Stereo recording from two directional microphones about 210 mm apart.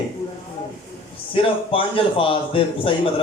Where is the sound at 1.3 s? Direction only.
25° left (ahead or behind).